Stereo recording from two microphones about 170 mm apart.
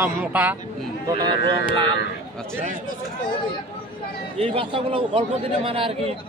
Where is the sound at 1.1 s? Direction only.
25° right (ahead or behind).